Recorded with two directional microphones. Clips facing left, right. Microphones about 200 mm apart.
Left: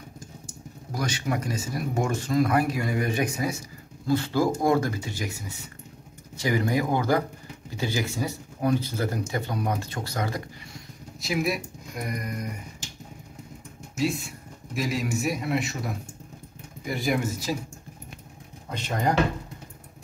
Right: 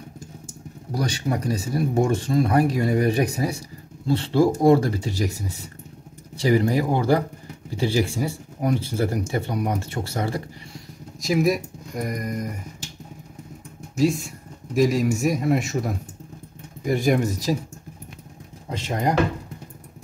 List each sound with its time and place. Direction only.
0.9 s speech: 35° right (ahead or behind)
9.5 s speech: 15° right (ahead or behind)
11.1 s speech: 40° right (ahead or behind)
13.9 s a man's voice: 40° right (ahead or behind)